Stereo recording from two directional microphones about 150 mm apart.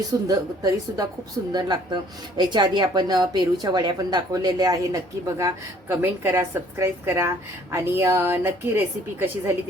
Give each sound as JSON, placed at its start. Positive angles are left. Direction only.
{"t": 0.1, "sound": "a woman's voice", "side_deg": -25}